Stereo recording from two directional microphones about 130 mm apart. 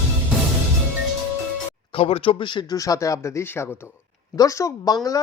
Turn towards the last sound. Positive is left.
turn(degrees=30)  # may be behind; listen again after turning